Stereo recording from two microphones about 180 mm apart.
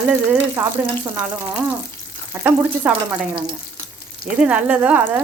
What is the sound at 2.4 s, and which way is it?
Speech, 10° right (ahead or behind).